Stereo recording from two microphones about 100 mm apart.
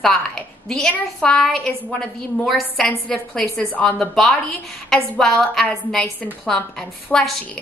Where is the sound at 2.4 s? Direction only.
Centre (ahead or behind).